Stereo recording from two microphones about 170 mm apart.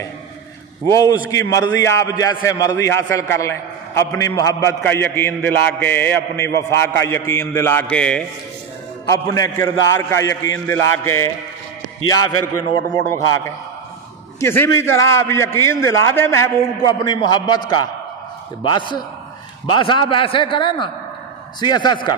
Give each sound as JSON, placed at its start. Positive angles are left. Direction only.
{"t": 0.8, "sound": "a man's voice", "side_deg": 20}
{"t": 9.0, "sound": "a man's voice", "side_deg": 20}
{"t": 12.7, "sound": "a man's voice", "side_deg": 20}